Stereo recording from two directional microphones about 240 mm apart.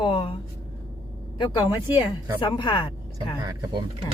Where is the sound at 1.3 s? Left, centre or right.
Centre.